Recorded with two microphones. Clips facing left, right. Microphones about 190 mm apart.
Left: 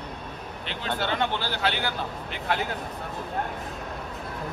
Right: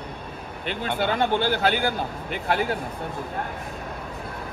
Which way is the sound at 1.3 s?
50° right (ahead or behind).